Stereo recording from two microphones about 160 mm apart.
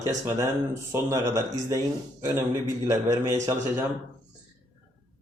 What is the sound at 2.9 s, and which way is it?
Speech, 20° right (ahead or behind).